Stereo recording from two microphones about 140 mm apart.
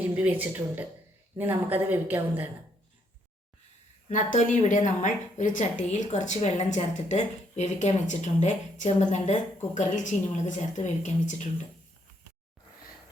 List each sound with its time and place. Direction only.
0.0 s a woman's voice: 15° right (ahead or behind)
4.1 s a woman's voice: 65° left (ahead or behind)